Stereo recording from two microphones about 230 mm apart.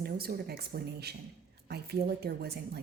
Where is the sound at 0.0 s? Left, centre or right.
Right.